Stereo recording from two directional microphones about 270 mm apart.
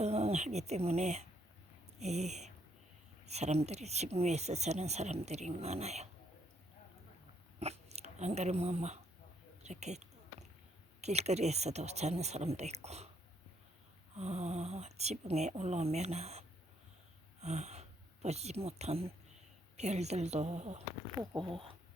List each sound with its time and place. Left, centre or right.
0.0 s speech: right
7.6 s speech: right
9.6 s a sound: right
11.0 s speech: right
14.2 s speech: right